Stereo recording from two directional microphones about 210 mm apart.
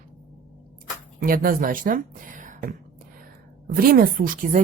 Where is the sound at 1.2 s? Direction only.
45° right (ahead or behind).